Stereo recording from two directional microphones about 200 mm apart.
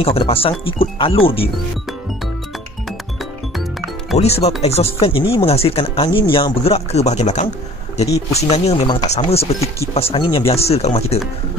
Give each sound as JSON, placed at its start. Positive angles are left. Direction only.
{"t": 0.0, "sound": "speech", "side_deg": 30}
{"t": 4.2, "sound": "speech", "side_deg": 30}